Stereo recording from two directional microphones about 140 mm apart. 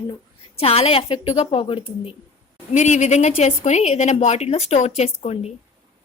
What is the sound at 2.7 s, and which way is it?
A woman's voice, 55° left (ahead or behind).